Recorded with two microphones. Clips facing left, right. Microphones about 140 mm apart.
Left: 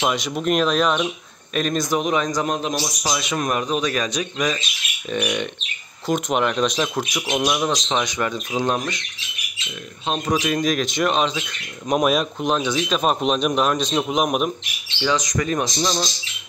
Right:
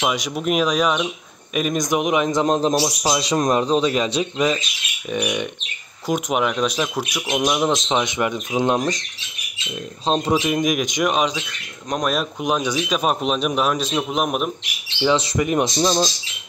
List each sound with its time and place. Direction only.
0.0 s a man's voice: 10° right (ahead or behind)
5.1 s speech: 10° right (ahead or behind)
7.7 s a man's voice: 25° right (ahead or behind)
10.0 s speech: 25° right (ahead or behind); by 11.3 s 10° right (ahead or behind)
11.9 s speech: 5° left (ahead or behind)
15.0 s a man's voice: 25° right (ahead or behind)